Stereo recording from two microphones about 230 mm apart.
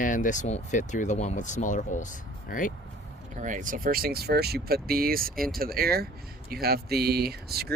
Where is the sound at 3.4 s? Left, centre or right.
Right.